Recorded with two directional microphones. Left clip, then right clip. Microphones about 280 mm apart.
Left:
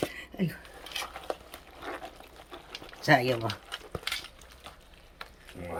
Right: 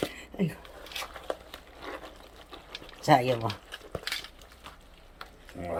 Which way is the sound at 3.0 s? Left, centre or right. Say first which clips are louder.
Right 1 dB; centre.